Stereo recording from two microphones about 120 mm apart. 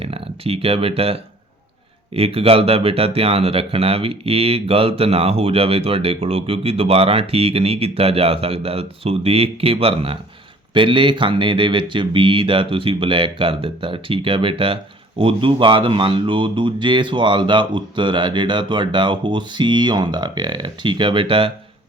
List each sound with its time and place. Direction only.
0.0 s speech: 55° right (ahead or behind)